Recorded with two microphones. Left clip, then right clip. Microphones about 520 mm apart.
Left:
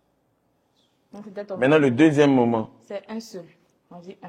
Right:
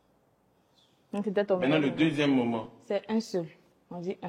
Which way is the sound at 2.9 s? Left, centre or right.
Right.